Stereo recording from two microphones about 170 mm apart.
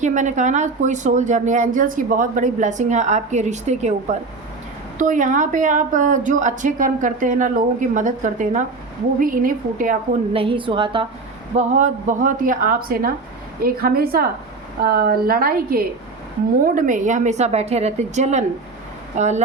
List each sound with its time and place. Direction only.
0.0 s speech: 45° right (ahead or behind)
4.9 s speech: 50° right (ahead or behind)
10.3 s a woman's voice: 30° right (ahead or behind)
11.5 s a woman's voice: 45° right (ahead or behind)